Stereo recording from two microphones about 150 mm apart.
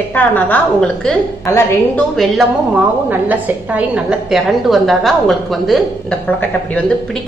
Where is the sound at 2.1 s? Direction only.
Centre (ahead or behind).